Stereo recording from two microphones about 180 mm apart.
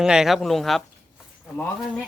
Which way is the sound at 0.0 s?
5° right (ahead or behind).